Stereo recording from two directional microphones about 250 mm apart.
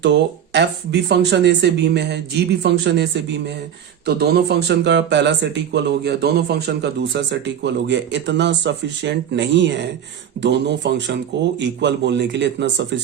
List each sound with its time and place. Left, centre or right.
0.0 s speech: right